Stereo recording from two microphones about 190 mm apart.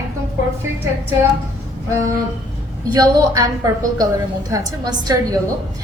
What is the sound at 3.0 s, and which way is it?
Speech, 20° right (ahead or behind).